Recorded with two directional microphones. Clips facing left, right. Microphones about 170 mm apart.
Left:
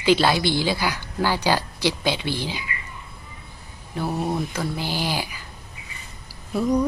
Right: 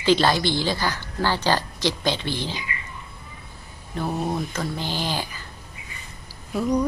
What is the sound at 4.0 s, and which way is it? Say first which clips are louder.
A woman's voice: left 1 dB; 5° left (ahead or behind).